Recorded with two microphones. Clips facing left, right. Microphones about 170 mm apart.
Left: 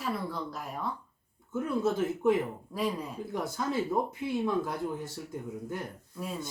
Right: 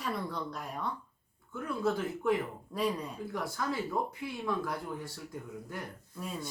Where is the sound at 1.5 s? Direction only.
25° left (ahead or behind).